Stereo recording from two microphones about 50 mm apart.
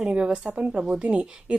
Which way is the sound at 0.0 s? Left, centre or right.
Right.